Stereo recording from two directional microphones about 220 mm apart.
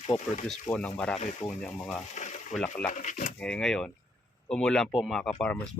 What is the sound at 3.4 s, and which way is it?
Speech, 5° left (ahead or behind).